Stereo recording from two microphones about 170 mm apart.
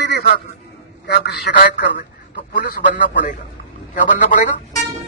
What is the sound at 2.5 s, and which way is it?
A man's voice, 65° left (ahead or behind).